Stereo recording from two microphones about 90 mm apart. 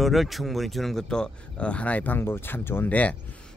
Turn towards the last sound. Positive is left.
turn(degrees=15)  # may be behind; listen again after turning